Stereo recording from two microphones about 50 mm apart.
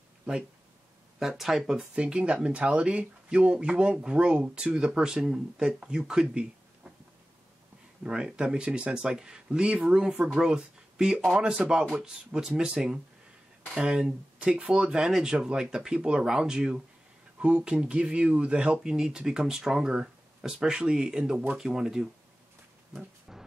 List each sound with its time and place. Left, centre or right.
1.2 s speech: centre
8.1 s speech: centre
21.5 s speech: centre